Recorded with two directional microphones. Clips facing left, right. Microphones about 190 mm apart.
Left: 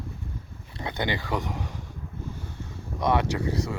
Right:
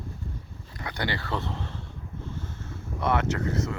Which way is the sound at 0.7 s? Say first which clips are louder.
Left 2 dB; 20° left (ahead or behind).